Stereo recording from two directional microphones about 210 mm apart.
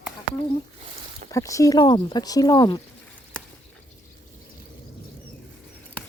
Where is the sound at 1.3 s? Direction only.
15° left (ahead or behind).